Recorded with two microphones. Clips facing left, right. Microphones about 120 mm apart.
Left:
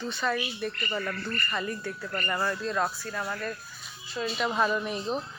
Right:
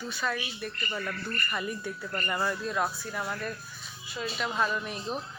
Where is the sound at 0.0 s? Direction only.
5° right (ahead or behind).